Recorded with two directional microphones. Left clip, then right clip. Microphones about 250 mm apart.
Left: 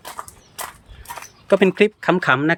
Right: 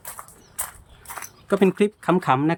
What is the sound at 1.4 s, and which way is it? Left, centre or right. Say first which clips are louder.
Speech: left 5 dB; centre.